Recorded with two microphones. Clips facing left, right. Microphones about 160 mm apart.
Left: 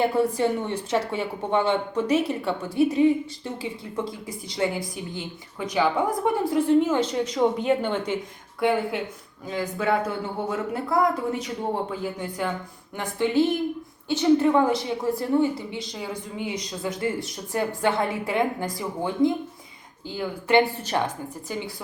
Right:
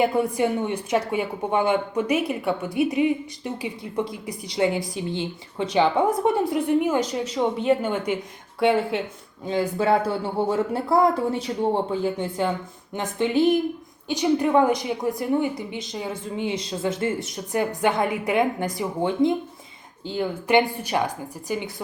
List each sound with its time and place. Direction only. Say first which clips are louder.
0.0 s a woman's voice: right 1 dB; 15° right (ahead or behind)
8.6 s a woman's voice: right 3 dB; 25° right (ahead or behind)